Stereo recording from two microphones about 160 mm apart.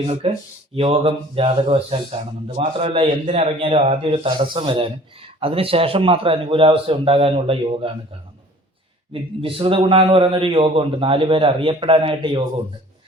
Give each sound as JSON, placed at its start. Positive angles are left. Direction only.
{"t": 0.1, "sound": "speech", "side_deg": -40}
{"t": 9.4, "sound": "speech", "side_deg": -35}